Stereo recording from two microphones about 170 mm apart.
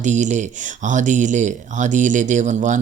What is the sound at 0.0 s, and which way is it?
Speech, 45° right (ahead or behind).